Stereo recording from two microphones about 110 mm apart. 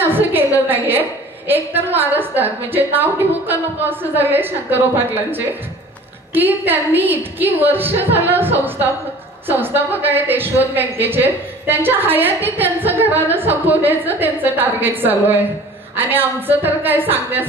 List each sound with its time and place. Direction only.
0.0 s a sound: 20° right (ahead or behind)
0.7 s a woman's voice: 20° right (ahead or behind)
6.3 s a woman's voice: 15° right (ahead or behind)
9.5 s a woman's voice: 20° right (ahead or behind)